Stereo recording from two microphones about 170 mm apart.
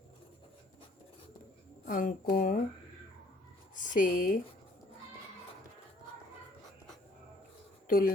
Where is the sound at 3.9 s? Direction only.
55° left (ahead or behind).